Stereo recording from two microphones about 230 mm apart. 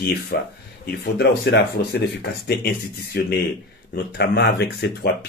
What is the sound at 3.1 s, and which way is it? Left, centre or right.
Speech, left.